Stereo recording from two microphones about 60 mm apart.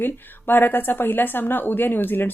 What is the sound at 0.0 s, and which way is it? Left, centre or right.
A woman's voice, left.